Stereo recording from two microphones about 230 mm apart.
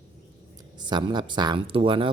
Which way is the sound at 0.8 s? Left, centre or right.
Centre.